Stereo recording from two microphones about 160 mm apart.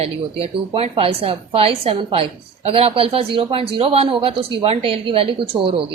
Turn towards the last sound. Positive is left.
turn(degrees=-35)  # may be behind; listen again after turning